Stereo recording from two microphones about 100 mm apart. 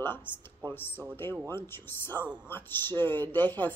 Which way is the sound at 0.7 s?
20° left (ahead or behind).